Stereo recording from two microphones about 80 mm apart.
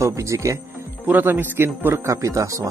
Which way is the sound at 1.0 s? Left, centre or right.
Right.